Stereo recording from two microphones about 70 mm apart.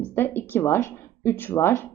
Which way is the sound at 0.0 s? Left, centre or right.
Left.